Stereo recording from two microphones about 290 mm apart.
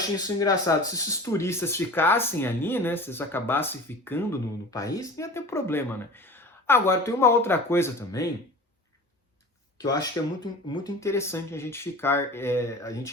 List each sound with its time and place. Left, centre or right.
0.2 s speech: centre
9.8 s speech: centre